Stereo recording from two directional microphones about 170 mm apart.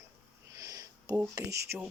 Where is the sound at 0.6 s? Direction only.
20° right (ahead or behind).